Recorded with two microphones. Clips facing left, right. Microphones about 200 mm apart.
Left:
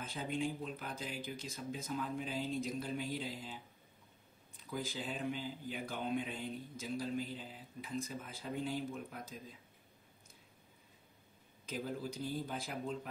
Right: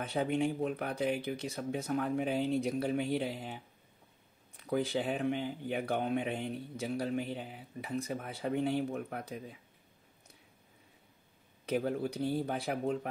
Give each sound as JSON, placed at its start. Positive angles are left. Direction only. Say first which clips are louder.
{"t": 0.0, "sound": "speech", "louder": "right 7 dB", "side_deg": -65}
{"t": 11.6, "sound": "speech", "louder": "right 9 dB", "side_deg": -65}